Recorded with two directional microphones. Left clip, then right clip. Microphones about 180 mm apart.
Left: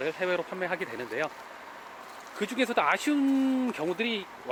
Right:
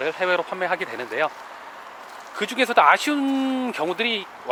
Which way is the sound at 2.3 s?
5° left (ahead or behind).